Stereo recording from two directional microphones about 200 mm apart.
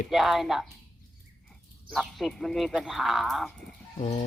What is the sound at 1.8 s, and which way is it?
Speech, centre (ahead or behind).